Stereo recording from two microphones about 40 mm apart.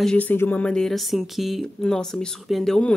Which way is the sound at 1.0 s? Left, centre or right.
Centre.